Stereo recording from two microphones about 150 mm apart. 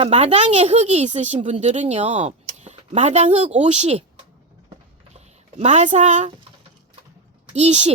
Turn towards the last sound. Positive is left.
turn(degrees=-45)  # may be behind; listen again after turning